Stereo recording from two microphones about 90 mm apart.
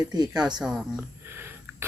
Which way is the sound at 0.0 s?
50° right (ahead or behind).